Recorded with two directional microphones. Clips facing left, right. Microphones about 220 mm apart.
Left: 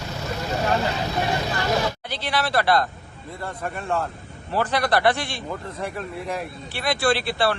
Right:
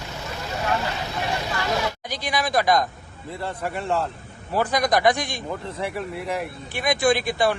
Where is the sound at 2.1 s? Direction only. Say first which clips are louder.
Right 2 dB; 15° right (ahead or behind).